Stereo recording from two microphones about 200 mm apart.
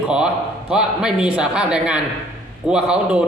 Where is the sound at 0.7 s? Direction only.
5° right (ahead or behind).